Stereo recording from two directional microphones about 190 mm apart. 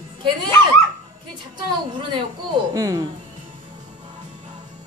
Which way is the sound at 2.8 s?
20° right (ahead or behind).